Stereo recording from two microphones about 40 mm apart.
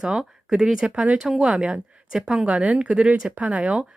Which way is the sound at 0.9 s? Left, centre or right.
Right.